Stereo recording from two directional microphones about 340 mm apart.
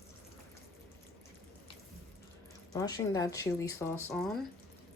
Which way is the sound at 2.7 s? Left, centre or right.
Centre.